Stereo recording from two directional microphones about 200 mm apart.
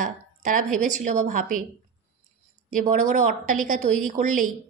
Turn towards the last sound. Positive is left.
turn(degrees=-40)  # may be behind; listen again after turning